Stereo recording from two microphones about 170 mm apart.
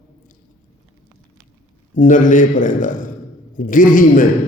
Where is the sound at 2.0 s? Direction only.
50° left (ahead or behind).